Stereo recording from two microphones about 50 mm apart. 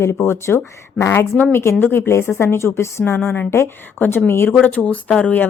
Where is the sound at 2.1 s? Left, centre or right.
Left.